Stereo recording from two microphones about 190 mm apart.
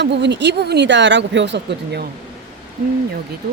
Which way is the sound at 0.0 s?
65° right (ahead or behind).